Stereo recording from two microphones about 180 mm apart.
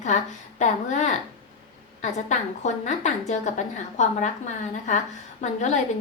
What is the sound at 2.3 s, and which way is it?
A woman's voice, 40° left (ahead or behind).